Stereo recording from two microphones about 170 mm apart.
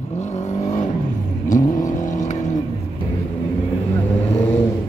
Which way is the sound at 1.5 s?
50° left (ahead or behind).